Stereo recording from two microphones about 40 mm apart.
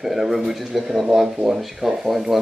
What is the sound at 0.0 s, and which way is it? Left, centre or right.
Speech, centre.